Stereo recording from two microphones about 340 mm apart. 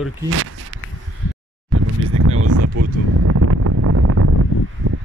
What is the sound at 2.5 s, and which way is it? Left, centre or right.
Wind, right.